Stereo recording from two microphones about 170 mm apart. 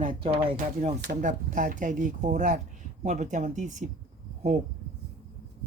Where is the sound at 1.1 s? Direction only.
45° right (ahead or behind).